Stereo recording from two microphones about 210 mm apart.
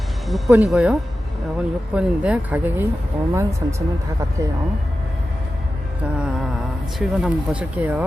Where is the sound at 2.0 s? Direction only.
5° right (ahead or behind).